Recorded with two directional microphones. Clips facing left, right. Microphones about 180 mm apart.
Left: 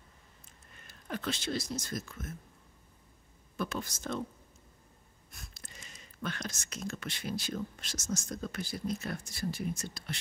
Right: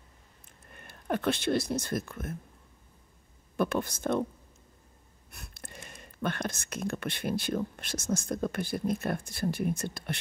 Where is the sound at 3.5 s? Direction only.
60° right (ahead or behind).